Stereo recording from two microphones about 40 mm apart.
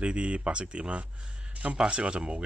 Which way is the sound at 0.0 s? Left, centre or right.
Right.